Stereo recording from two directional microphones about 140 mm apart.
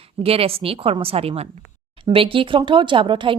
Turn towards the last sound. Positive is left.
turn(degrees=-35)  # may be behind; listen again after turning